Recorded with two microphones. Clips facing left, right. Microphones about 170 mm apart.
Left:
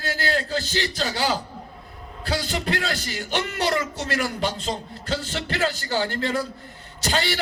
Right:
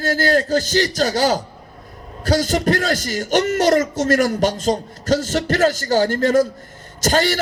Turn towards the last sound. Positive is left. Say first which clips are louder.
# right 7 dB
turn(degrees=-45)  # may be behind; listen again after turning